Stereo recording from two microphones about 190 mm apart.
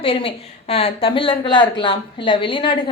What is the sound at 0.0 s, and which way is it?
Speech, 30° left (ahead or behind).